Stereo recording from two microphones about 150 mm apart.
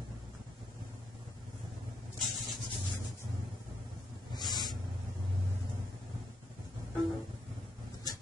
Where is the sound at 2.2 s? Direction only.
Centre (ahead or behind).